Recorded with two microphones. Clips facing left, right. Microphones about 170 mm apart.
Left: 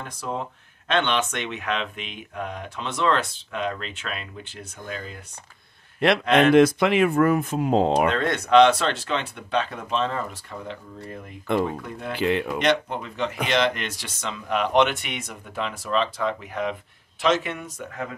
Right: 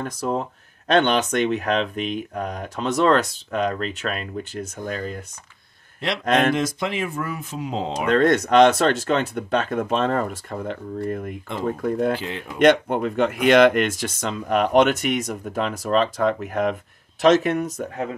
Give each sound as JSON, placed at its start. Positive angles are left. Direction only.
{"t": 0.2, "sound": "speech", "side_deg": -45}
{"t": 5.9, "sound": "a man's voice", "side_deg": 60}
{"t": 8.1, "sound": "speech", "side_deg": -40}
{"t": 12.2, "sound": "speech", "side_deg": 65}
{"t": 12.5, "sound": "speech", "side_deg": -50}